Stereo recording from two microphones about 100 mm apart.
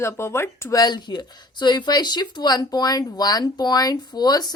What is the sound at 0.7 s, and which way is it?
Speech, 45° left (ahead or behind).